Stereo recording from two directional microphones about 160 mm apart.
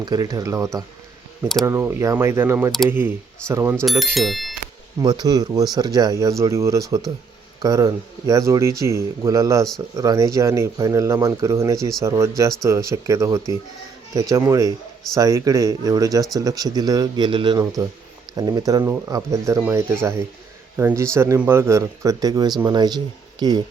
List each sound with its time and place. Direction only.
0.0 s speech: 25° right (ahead or behind)
3.8 s speech: centre (ahead or behind)
5.0 s speech: 25° right (ahead or behind)